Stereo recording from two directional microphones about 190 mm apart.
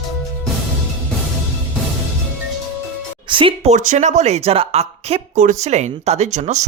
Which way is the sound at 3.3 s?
25° right (ahead or behind).